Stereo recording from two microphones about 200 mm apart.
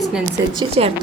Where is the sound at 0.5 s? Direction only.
30° right (ahead or behind).